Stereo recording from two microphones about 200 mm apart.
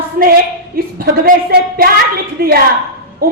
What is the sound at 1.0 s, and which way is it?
Speech, 50° right (ahead or behind).